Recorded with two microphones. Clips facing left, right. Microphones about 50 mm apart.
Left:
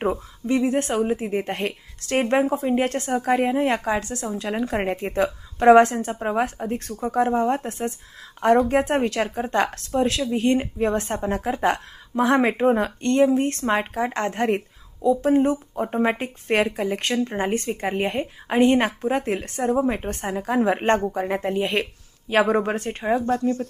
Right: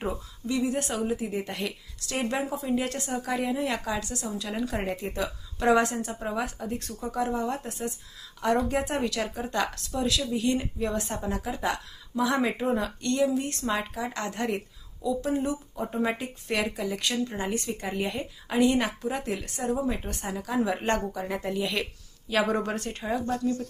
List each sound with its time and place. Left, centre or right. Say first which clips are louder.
0.0 s a woman's voice: left 8 dB; left